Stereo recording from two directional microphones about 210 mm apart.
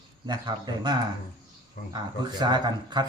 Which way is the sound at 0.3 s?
20° right (ahead or behind).